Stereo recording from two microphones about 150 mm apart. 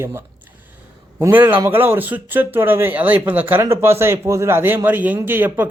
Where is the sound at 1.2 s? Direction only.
10° right (ahead or behind).